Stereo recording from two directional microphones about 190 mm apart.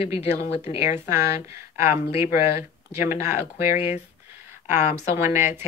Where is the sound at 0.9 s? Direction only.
15° right (ahead or behind).